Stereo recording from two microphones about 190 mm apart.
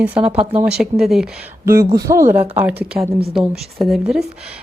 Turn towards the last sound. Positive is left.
turn(degrees=0)  # may be behind; listen again after turning